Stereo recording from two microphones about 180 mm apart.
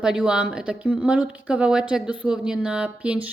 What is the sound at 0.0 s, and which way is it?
A woman's voice, 5° right (ahead or behind).